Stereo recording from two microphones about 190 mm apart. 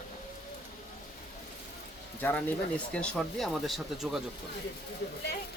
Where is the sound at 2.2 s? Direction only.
10° left (ahead or behind).